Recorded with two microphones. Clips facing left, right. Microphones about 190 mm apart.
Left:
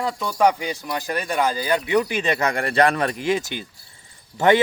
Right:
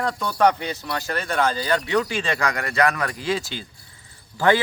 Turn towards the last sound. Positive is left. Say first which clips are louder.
# left 2 dB
turn(degrees=20)  # may be behind; listen again after turning